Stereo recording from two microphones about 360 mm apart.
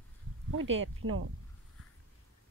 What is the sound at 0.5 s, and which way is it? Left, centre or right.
Speech, right.